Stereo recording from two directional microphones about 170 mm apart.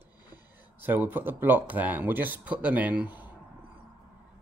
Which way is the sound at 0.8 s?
10° right (ahead or behind).